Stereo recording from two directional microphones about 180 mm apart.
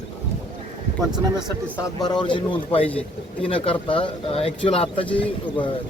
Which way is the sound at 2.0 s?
25° left (ahead or behind).